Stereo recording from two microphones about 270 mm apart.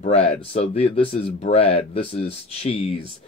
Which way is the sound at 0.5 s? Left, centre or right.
Left.